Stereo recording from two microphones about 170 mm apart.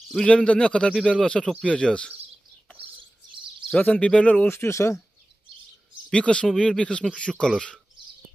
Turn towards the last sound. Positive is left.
turn(degrees=5)  # may be behind; listen again after turning